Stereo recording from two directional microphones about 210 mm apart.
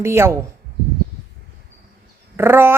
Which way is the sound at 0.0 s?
10° right (ahead or behind).